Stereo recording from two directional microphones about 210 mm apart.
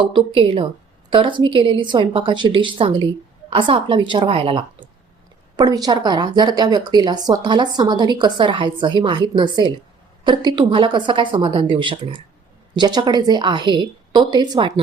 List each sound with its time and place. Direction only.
0.0 s speech: 25° right (ahead or behind)